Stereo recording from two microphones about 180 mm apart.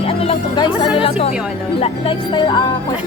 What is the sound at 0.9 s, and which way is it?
Speech, 30° left (ahead or behind).